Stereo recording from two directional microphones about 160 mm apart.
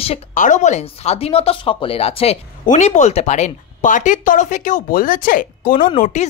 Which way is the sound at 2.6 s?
50° left (ahead or behind).